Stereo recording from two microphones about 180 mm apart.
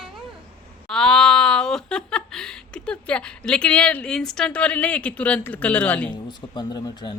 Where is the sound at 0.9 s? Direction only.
5° left (ahead or behind).